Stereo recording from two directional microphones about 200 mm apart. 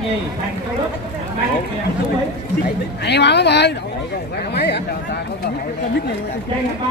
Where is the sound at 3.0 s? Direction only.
60° left (ahead or behind).